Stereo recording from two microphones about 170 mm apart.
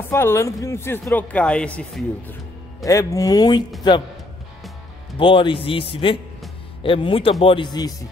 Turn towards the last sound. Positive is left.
turn(degrees=25)  # may be behind; listen again after turning